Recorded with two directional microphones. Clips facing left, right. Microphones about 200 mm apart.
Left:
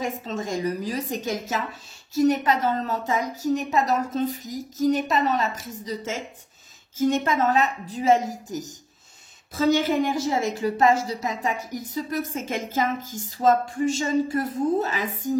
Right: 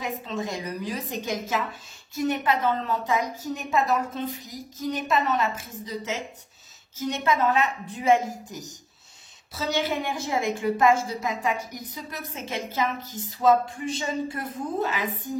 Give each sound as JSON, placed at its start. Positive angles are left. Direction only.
{"t": 0.0, "sound": "a woman's voice", "side_deg": 45}